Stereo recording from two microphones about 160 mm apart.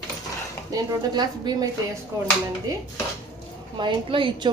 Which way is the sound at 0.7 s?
25° right (ahead or behind).